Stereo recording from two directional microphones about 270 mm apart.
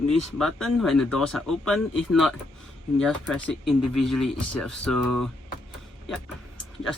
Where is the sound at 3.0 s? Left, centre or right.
Centre.